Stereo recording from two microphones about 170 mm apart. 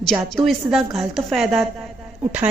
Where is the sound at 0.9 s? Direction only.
Centre (ahead or behind).